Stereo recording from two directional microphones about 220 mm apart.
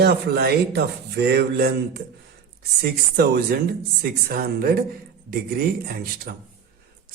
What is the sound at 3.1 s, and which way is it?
A man's voice, 45° right (ahead or behind).